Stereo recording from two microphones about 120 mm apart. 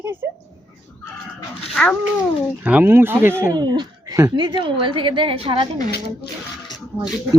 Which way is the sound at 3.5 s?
35° right (ahead or behind).